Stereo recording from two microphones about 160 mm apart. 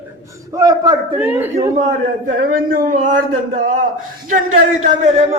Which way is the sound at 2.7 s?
60° right (ahead or behind).